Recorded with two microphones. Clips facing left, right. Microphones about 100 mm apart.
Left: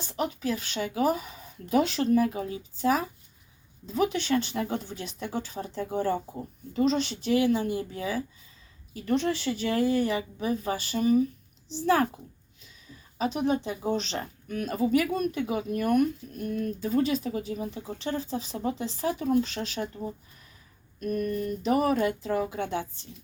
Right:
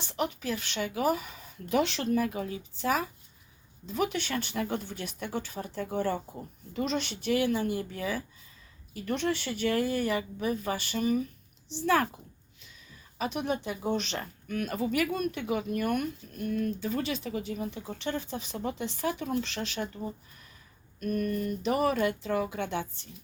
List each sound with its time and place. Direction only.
0.0 s a woman's voice: 35° left (ahead or behind)
21.1 s a sound: 45° right (ahead or behind)
21.4 s a woman's voice: 35° left (ahead or behind)